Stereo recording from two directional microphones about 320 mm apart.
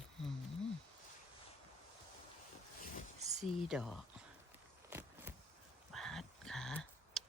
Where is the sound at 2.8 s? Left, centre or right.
Left.